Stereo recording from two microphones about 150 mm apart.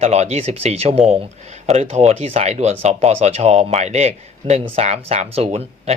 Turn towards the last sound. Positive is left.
turn(degrees=-45)  # may be behind; listen again after turning